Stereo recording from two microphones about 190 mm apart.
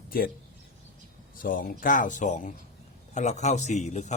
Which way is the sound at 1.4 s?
45° left (ahead or behind).